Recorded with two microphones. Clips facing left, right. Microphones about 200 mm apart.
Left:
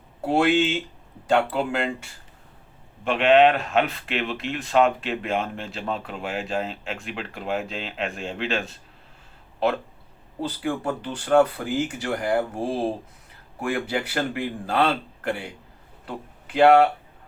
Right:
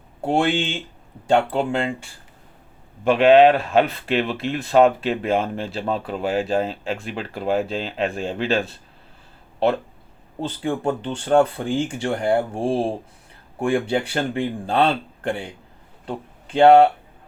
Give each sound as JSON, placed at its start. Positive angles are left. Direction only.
{"t": 0.2, "sound": "speech", "side_deg": -25}
{"t": 10.4, "sound": "speech", "side_deg": -25}